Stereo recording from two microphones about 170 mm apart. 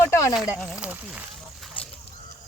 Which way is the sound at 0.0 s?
15° left (ahead or behind).